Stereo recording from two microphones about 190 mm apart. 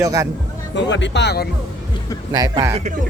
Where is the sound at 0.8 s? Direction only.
70° left (ahead or behind).